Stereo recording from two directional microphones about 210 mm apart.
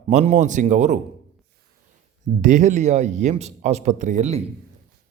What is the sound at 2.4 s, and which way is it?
A man's voice, 35° right (ahead or behind).